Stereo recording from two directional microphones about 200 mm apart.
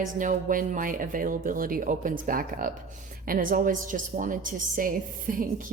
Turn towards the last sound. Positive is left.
turn(degrees=-45)  # may be behind; listen again after turning